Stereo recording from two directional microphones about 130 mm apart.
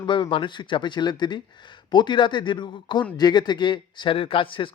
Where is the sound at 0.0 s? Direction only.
40° left (ahead or behind).